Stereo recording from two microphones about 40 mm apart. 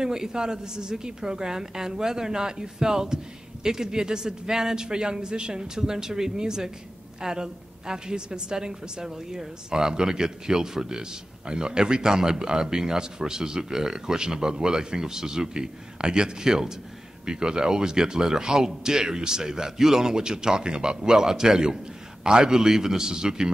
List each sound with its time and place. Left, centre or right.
0.0 s a man's voice: centre